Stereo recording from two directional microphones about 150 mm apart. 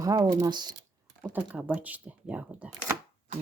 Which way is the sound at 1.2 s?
10° right (ahead or behind).